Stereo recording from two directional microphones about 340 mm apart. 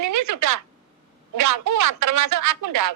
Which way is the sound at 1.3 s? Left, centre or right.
Right.